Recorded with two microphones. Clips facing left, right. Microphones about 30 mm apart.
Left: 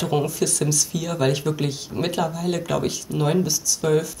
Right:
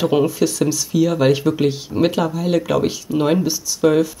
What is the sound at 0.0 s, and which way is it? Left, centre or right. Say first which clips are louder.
Speech: right 6 dB; centre.